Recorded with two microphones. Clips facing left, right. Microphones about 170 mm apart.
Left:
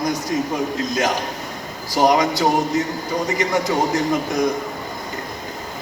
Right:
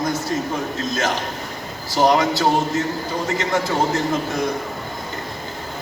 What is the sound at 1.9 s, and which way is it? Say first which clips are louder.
A man's voice: even; 15° left (ahead or behind).